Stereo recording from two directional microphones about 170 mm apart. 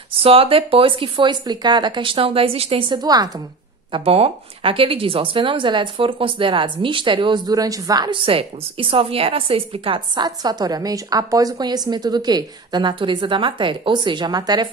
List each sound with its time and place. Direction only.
0.1 s speech: 35° right (ahead or behind)
3.9 s speech: 35° right (ahead or behind)